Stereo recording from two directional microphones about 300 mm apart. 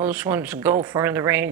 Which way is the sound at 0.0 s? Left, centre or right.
Centre.